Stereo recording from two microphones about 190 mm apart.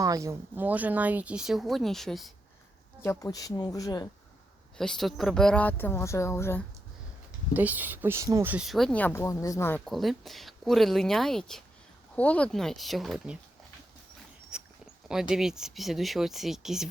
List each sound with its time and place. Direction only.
0.0 s speech: 15° right (ahead or behind); by 2.3 s centre (ahead or behind)
3.0 s speech: 15° left (ahead or behind)
4.8 s speech: centre (ahead or behind)
7.5 s speech: 10° right (ahead or behind)
14.5 s a sound: 5° right (ahead or behind)
15.0 s speech: 5° right (ahead or behind)